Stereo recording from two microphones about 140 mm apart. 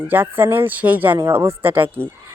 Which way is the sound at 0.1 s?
15° right (ahead or behind).